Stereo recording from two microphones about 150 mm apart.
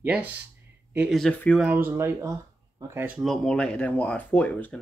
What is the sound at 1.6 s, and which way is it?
Speech, 10° right (ahead or behind).